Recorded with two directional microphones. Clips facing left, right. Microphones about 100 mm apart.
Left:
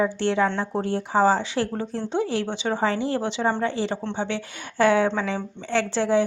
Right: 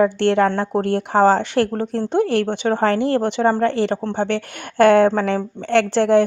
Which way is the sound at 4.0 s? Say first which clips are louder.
Right 6 dB; 50° right (ahead or behind).